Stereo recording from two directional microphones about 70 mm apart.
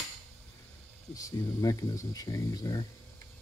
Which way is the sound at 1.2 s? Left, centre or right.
Left.